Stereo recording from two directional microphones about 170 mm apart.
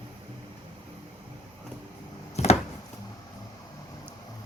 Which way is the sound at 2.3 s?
40° left (ahead or behind).